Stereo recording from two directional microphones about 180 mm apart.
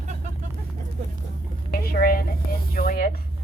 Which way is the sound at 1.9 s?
55° left (ahead or behind).